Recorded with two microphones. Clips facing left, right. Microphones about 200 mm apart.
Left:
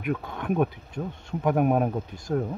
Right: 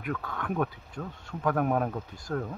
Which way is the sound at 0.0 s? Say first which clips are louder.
Left 4 dB; 20° left (ahead or behind).